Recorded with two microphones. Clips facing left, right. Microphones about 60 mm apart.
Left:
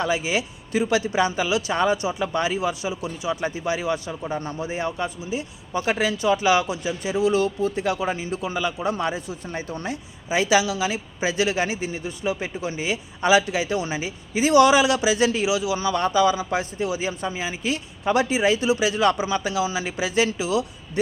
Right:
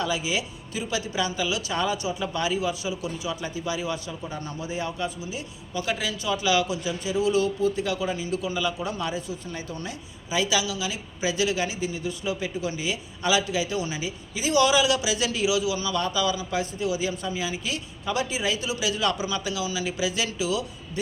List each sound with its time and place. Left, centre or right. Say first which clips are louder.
0.0 s a man's voice: left 4 dB; left